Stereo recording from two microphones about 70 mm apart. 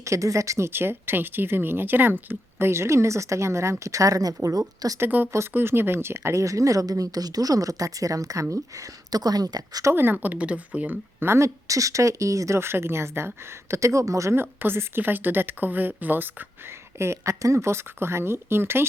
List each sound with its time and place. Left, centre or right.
0.0 s a woman's voice: right
0.7 s speech: right
4.9 s speech: right
9.9 s speech: right
11.3 s a woman's voice: right
14.3 s speech: right